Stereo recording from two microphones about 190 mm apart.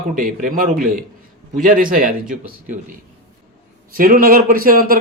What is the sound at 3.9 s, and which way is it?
A man's voice, 50° right (ahead or behind).